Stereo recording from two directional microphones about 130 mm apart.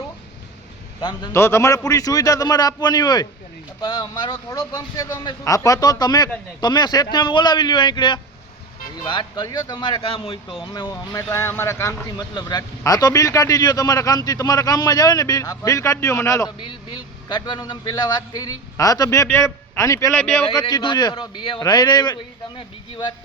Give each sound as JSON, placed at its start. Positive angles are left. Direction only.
{"t": 1.3, "sound": "a man's voice", "side_deg": 20}
{"t": 10.7, "sound": "a man's voice", "side_deg": 30}
{"t": 11.2, "sound": "a man's voice", "side_deg": 20}
{"t": 16.6, "sound": "a man's voice", "side_deg": 40}
{"t": 20.1, "sound": "speech", "side_deg": 5}
{"t": 20.5, "sound": "a man's voice", "side_deg": 30}